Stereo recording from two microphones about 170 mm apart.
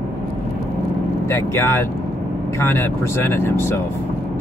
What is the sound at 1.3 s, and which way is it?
Speech, 15° left (ahead or behind).